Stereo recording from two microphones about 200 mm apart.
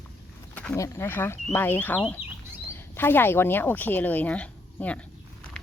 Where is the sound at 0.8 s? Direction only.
10° left (ahead or behind).